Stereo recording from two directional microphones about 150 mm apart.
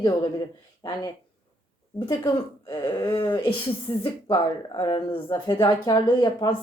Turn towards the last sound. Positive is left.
turn(degrees=25)  # may be behind; listen again after turning